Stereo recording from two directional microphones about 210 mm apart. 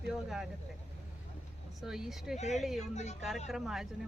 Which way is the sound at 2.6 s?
Centre (ahead or behind).